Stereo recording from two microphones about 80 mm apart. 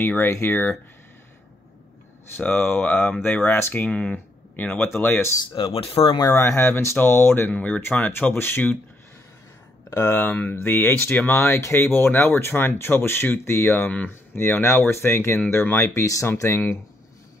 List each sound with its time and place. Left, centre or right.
0.0 s speech: left
2.3 s speech: left
3.8 s speech: centre; by 5.4 s left
5.5 s speech: left
6.2 s speech: left
9.8 s speech: left
11.3 s speech: left